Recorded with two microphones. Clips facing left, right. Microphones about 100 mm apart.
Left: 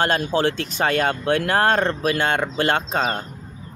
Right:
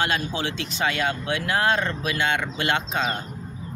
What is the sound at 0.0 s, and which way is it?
Speech, 45° left (ahead or behind).